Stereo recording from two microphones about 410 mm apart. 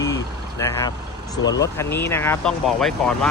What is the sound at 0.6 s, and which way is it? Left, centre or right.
Speech, centre.